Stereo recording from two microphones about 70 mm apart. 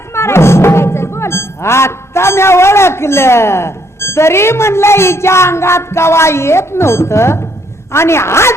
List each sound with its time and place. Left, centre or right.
0.1 s speech: left